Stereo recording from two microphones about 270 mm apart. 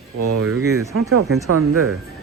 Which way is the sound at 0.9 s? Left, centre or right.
Right.